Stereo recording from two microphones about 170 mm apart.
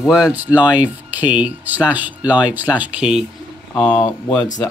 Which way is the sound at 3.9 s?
20° left (ahead or behind).